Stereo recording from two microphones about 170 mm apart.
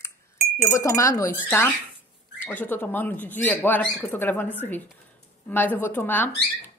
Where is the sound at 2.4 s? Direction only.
10° left (ahead or behind).